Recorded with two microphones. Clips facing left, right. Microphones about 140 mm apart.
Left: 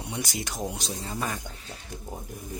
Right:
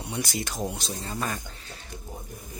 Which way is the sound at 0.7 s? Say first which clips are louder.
Even; 15° left (ahead or behind).